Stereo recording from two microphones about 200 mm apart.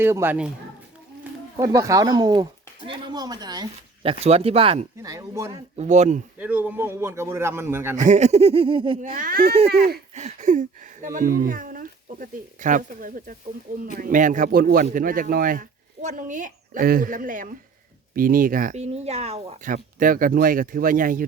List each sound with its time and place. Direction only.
0.0 s a man's voice: 10° right (ahead or behind)
1.5 s speech: 15° right (ahead or behind)
5.1 s a man's voice: 15° right (ahead or behind)
5.7 s speech: 35° right (ahead or behind)
6.4 s a man's voice: 10° right (ahead or behind)
7.9 s speech: 35° right (ahead or behind)
9.1 s speech: 45° right (ahead or behind)
10.2 s speech: 35° right (ahead or behind)